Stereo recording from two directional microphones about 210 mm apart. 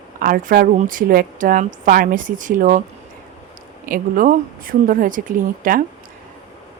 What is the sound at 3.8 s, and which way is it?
Speech, 40° right (ahead or behind).